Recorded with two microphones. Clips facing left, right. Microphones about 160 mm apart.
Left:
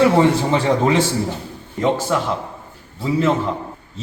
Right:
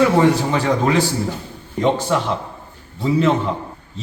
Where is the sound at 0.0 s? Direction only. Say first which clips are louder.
Even; 25° left (ahead or behind).